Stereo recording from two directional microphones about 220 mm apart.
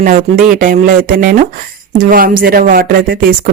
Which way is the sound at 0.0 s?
35° right (ahead or behind).